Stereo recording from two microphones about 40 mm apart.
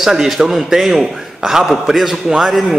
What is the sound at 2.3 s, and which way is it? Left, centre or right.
Speech, centre.